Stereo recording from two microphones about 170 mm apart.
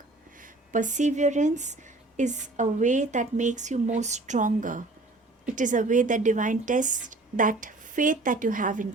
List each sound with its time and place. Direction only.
0.3 s speech: 50° right (ahead or behind)